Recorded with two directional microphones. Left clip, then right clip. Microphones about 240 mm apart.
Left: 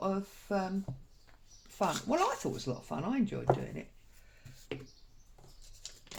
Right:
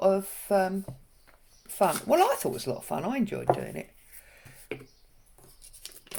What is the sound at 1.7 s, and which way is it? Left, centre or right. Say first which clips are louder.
Speech: right 8 dB; right.